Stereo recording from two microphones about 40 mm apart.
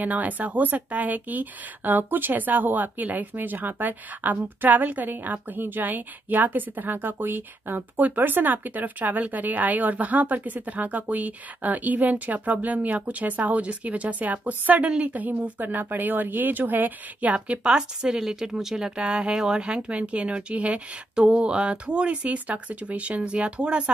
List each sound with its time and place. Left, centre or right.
0.0 s speech: right
17.3 s speech: right
17.7 s speech: centre
18.9 s speech: right